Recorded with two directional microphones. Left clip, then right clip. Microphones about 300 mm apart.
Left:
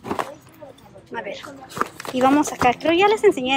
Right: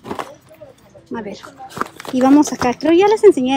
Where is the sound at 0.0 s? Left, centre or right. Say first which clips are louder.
Left 1 dB; centre.